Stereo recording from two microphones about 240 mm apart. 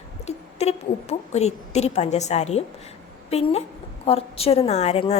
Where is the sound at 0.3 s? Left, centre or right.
Left.